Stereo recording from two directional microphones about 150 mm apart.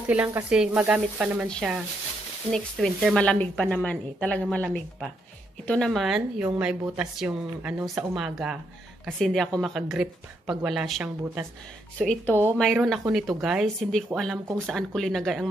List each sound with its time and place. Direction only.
0.1 s speech: 15° right (ahead or behind); by 15.4 s 5° left (ahead or behind)